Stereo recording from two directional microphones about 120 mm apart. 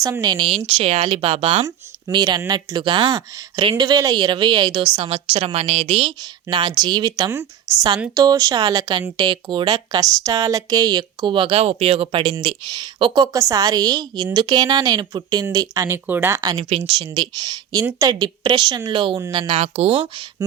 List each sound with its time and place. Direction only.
0.0 s speech: 30° right (ahead or behind)
0.5 s speech: 55° right (ahead or behind)
4.9 s a woman's voice: 60° right (ahead or behind)
6.2 s a woman's voice: 40° right (ahead or behind)
16.0 s a woman's voice: 20° right (ahead or behind)
16.6 s speech: 55° right (ahead or behind)
17.2 s speech: 35° right (ahead or behind)
19.5 s a woman's voice: 65° right (ahead or behind)